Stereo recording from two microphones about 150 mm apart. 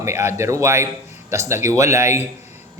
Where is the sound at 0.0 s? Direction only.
15° right (ahead or behind).